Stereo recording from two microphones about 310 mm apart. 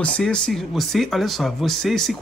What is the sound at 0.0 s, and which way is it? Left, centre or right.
Speech, centre.